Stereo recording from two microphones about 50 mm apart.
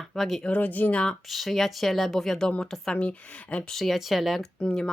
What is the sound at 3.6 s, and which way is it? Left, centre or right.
Speech, centre.